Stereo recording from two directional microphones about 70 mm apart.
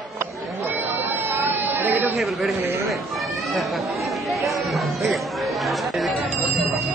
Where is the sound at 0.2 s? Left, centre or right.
Right.